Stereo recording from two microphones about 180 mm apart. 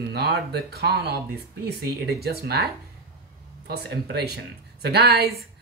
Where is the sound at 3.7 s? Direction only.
65° right (ahead or behind).